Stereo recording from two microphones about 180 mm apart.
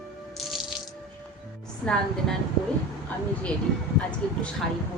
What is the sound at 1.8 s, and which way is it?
Speech, 5° left (ahead or behind).